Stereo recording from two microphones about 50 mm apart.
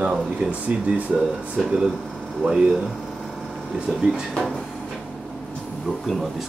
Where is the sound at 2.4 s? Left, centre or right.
Centre.